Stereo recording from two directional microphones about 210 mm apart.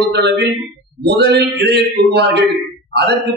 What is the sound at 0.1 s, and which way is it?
A man's voice, 55° right (ahead or behind).